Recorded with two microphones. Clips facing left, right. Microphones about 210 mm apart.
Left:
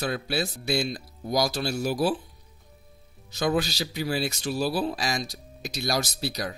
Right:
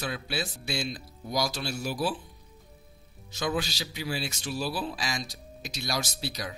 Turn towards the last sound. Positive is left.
turn(degrees=40)  # may be behind; listen again after turning